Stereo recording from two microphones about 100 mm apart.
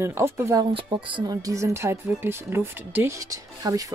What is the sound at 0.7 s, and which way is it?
Speech, 55° right (ahead or behind).